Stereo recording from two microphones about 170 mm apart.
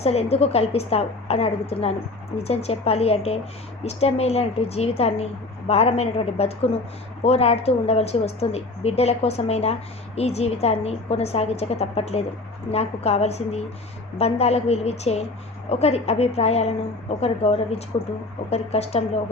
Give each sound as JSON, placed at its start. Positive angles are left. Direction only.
{"t": 0.0, "sound": "a woman's voice", "side_deg": 35}